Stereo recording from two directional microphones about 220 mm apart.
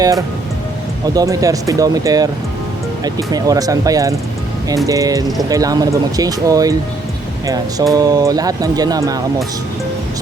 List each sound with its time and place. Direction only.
1.0 s speech: 15° right (ahead or behind)